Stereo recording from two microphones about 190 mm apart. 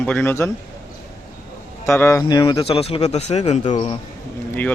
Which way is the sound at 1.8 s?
15° left (ahead or behind).